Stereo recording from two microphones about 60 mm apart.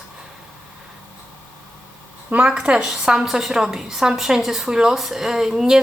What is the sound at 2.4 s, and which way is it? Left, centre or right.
A woman's voice, centre.